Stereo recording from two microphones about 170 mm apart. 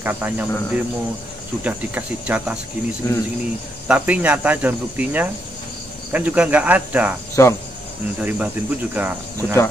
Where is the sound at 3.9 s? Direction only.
10° right (ahead or behind).